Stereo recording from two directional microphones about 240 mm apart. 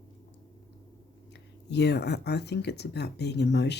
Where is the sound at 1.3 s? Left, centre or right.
Left.